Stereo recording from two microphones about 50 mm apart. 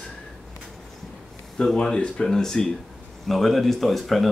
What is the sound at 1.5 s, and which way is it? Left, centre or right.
Speech, centre.